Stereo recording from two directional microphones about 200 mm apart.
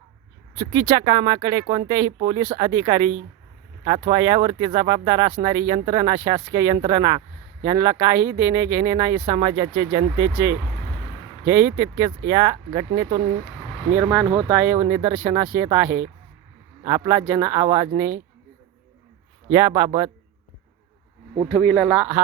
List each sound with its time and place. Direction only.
0.5 s speech: 15° right (ahead or behind)
13.9 s speech: 5° right (ahead or behind)
19.5 s speech: 15° right (ahead or behind)
21.5 s speech: 5° left (ahead or behind)